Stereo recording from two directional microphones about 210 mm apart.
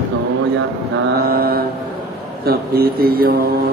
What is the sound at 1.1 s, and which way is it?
A man's voice, 45° right (ahead or behind).